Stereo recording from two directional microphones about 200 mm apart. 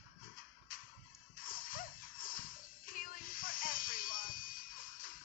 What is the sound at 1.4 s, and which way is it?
Music, 45° left (ahead or behind).